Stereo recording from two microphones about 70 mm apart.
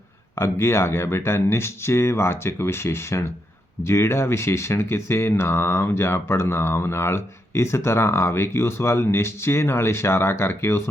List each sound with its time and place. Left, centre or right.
0.3 s speech: left